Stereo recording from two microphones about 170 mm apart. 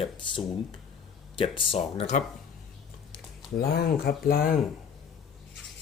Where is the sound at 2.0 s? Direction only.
45° left (ahead or behind).